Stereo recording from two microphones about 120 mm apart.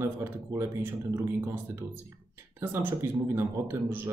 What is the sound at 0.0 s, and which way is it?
Speech, 20° right (ahead or behind).